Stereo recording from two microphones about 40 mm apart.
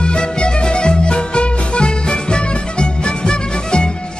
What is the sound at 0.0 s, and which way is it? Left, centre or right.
Music, left.